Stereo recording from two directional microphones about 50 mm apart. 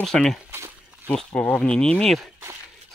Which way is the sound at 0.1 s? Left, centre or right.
Centre.